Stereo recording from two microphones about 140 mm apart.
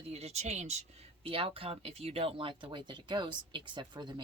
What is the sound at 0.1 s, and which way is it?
Speech, 50° right (ahead or behind).